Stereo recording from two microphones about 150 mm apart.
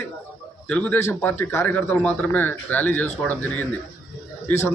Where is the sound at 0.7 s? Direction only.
15° left (ahead or behind).